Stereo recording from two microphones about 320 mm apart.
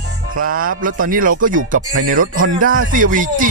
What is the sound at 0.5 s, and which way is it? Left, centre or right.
Speech, right.